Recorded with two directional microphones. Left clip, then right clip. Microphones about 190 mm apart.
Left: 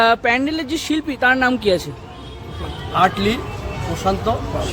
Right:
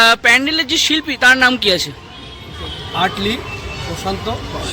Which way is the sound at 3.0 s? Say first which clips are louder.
Left 1 dB; 25° left (ahead or behind).